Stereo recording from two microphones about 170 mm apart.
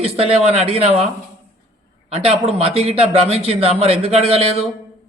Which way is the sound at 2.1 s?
40° right (ahead or behind).